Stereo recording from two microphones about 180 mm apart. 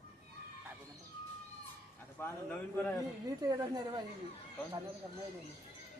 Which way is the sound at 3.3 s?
20° right (ahead or behind).